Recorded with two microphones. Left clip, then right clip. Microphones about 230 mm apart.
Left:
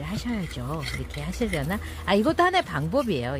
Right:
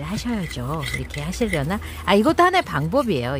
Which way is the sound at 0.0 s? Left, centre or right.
Centre.